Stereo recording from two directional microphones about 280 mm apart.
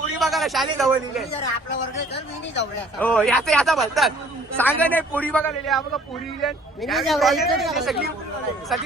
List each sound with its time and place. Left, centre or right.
0.2 s a man's voice: centre
3.0 s a man's voice: centre